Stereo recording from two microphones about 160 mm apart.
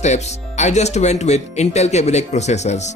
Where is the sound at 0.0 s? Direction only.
45° left (ahead or behind).